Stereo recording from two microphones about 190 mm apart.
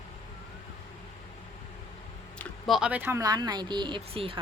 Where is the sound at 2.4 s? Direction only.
Centre (ahead or behind).